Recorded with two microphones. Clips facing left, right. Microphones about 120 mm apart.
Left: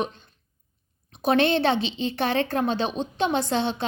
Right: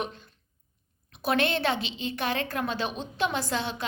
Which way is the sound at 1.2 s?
25° left (ahead or behind).